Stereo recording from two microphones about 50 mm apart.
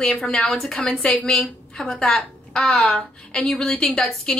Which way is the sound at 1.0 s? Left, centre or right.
Left.